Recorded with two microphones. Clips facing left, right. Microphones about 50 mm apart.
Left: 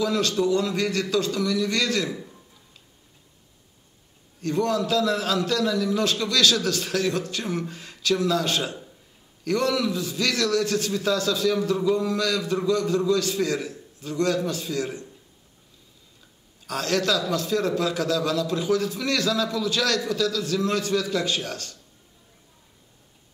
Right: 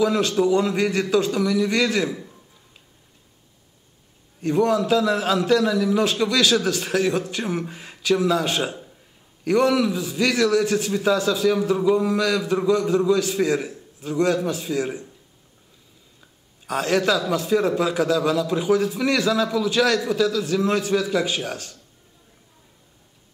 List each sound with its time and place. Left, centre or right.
0.0 s a man's voice: centre
4.4 s a man's voice: centre
16.6 s a man's voice: centre